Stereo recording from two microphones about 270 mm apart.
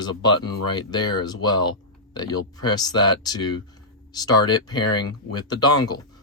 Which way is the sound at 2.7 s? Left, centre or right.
Centre.